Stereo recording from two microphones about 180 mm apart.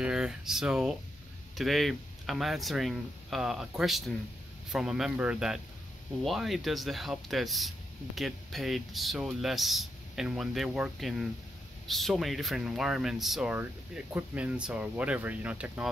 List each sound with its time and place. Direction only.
0.0 s speech: 5° right (ahead or behind)